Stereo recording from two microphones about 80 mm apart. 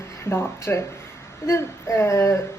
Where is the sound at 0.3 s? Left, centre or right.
Left.